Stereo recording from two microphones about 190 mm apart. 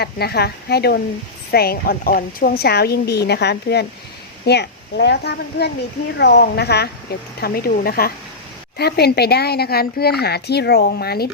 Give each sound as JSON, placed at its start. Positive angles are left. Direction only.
{"t": 0.0, "sound": "speech", "side_deg": 55}